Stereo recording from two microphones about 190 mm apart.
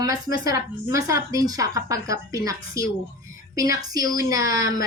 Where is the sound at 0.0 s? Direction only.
20° right (ahead or behind).